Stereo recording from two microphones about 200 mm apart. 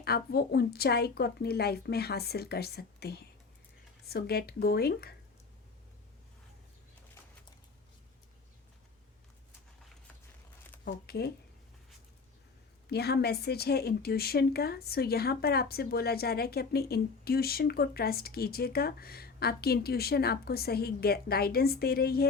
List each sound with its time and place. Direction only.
0.0 s a woman's voice: 50° left (ahead or behind)
10.8 s a woman's voice: 50° left (ahead or behind)
12.9 s a woman's voice: 55° left (ahead or behind)